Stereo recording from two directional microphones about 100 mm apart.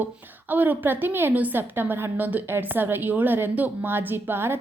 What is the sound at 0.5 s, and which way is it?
A woman's voice, 20° right (ahead or behind).